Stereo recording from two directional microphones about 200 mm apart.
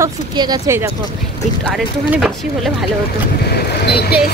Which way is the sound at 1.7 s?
5° right (ahead or behind).